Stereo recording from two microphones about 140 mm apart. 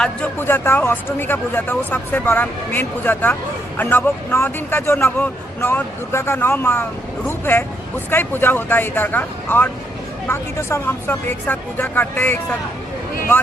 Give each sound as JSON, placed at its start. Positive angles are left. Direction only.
{"t": 0.0, "sound": "speech", "side_deg": 10}